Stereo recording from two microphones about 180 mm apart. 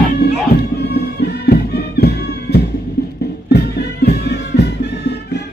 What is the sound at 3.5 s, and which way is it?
Music, 65° left (ahead or behind).